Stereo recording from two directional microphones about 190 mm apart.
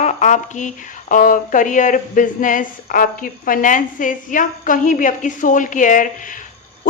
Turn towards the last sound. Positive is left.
turn(degrees=45)  # may be behind; listen again after turning